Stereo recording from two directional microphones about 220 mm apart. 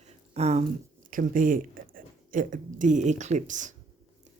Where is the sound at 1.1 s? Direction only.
40° right (ahead or behind).